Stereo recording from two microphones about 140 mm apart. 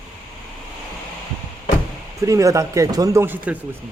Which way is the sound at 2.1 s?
25° right (ahead or behind).